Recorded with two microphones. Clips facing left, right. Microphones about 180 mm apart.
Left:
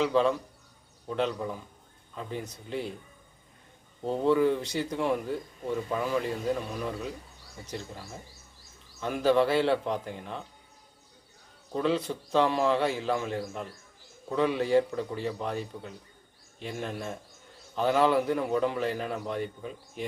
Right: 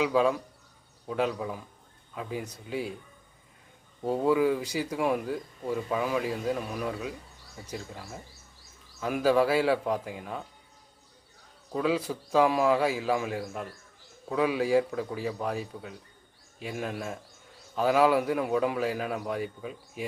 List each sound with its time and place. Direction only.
0.0 s a man's voice: 5° right (ahead or behind)
4.0 s a man's voice: 5° right (ahead or behind)
11.7 s a man's voice: 5° right (ahead or behind)